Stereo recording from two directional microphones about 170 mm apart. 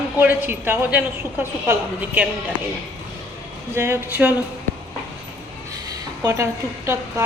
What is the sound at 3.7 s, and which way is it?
Speech, 15° right (ahead or behind).